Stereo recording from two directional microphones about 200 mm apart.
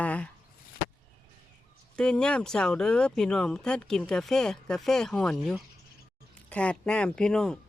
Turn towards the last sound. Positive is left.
turn(degrees=5)  # may be behind; listen again after turning